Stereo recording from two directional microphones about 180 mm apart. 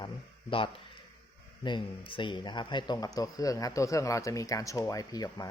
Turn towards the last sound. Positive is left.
turn(degrees=20)  # may be behind; listen again after turning